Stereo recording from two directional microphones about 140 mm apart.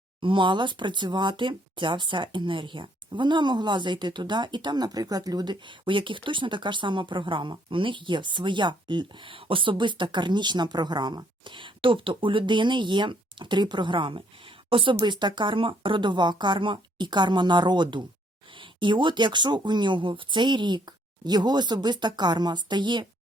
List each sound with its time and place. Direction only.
0.2 s speech: 35° right (ahead or behind)